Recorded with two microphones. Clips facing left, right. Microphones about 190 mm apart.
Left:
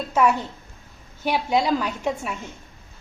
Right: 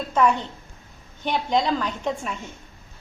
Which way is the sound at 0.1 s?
5° left (ahead or behind).